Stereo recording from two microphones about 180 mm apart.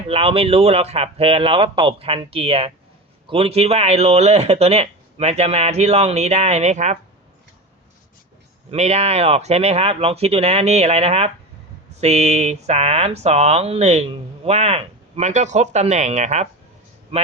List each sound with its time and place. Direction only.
0.1 s speech: 30° right (ahead or behind)
8.7 s speech: 35° right (ahead or behind)